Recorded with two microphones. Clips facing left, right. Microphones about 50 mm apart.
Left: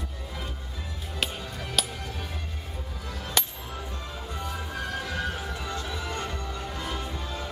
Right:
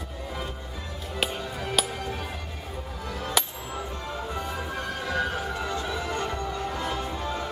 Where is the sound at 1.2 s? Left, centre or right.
Centre.